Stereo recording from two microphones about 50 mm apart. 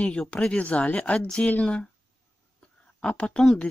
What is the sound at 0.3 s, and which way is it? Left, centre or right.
Speech, centre.